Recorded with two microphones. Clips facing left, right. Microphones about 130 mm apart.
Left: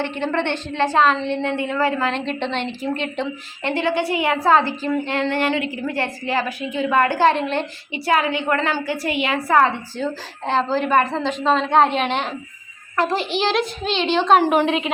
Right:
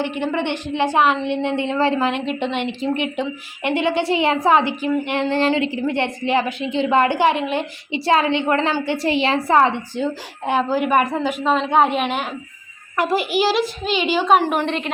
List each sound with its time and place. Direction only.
0.0 s a woman's voice: 15° right (ahead or behind)
7.9 s a woman's voice: 25° right (ahead or behind); by 14.6 s 5° right (ahead or behind)
14.6 s a woman's voice: 5° left (ahead or behind)